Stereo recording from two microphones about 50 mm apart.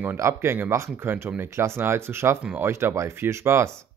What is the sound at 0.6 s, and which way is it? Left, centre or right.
Speech, right.